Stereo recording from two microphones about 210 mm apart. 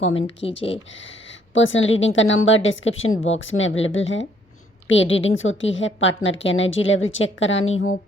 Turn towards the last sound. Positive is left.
turn(degrees=65)  # may be behind; listen again after turning